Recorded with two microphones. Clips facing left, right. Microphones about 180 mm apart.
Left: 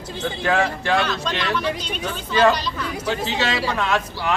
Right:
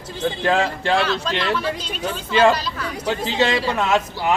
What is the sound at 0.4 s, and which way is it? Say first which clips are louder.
Speech: even; 30° right (ahead or behind).